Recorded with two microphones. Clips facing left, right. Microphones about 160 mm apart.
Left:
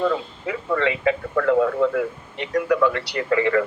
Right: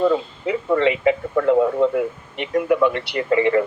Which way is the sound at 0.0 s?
20° right (ahead or behind).